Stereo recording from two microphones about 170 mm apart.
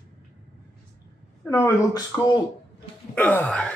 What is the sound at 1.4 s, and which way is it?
Wail, 15° left (ahead or behind).